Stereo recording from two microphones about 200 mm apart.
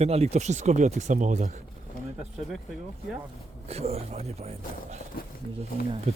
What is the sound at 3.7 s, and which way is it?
Speech, 30° right (ahead or behind).